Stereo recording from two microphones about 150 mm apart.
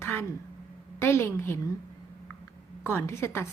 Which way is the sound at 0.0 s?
15° left (ahead or behind).